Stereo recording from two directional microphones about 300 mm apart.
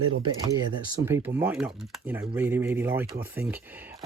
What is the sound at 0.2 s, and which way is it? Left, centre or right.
Speech, centre.